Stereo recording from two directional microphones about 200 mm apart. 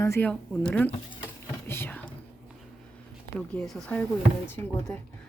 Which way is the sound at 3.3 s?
5° left (ahead or behind).